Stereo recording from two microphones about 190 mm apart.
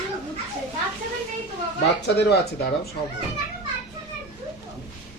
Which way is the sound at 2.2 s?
60° left (ahead or behind).